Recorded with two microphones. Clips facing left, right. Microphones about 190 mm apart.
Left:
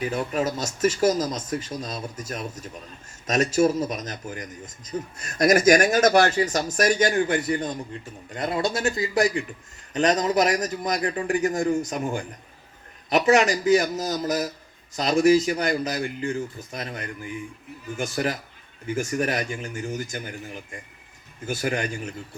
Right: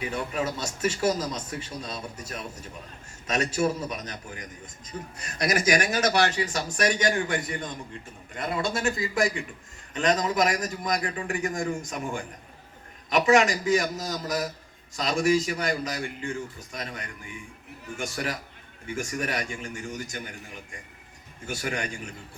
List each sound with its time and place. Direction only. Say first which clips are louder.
0.0 s a man's voice: left 4 dB; 40° left (ahead or behind)
21.4 s a man's voice: left 5 dB; 40° left (ahead or behind)